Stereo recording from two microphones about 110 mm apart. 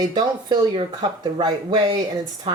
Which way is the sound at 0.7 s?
55° right (ahead or behind).